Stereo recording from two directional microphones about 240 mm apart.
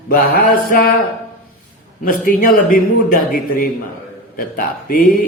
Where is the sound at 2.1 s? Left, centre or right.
Left.